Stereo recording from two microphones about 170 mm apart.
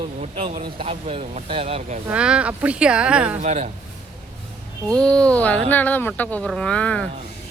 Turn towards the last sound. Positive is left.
turn(degrees=5)  # may be behind; listen again after turning